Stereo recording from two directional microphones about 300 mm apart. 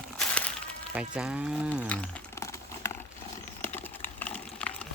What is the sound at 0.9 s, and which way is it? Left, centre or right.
Crumpling, centre.